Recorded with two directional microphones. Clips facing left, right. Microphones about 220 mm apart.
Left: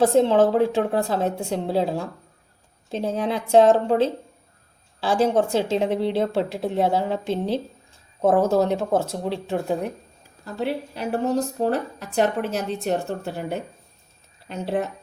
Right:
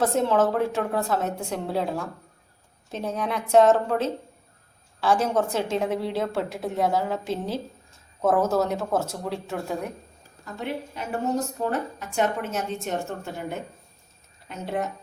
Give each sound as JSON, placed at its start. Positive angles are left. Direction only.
{"t": 0.0, "sound": "a woman's voice", "side_deg": 30}